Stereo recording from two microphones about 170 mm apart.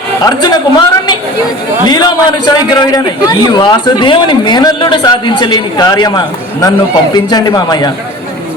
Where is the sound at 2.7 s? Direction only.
25° left (ahead or behind).